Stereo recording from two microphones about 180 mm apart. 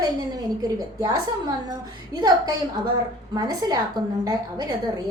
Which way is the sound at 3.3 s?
20° right (ahead or behind).